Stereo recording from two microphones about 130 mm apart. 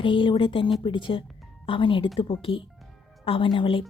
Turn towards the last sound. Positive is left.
turn(degrees=45)  # may be behind; listen again after turning